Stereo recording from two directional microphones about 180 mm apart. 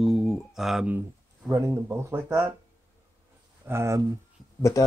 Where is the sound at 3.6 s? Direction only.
15° right (ahead or behind).